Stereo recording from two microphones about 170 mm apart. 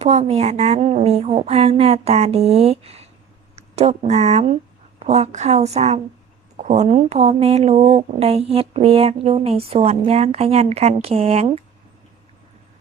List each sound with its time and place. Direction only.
0.0 s speech: 40° right (ahead or behind)